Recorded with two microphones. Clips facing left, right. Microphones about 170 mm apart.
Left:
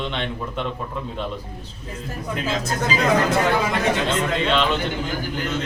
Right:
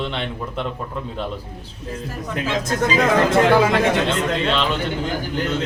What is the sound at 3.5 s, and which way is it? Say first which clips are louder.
Speech: right 6 dB; 75° right (ahead or behind).